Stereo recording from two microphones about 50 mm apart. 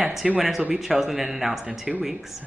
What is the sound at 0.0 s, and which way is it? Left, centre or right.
Speech, centre.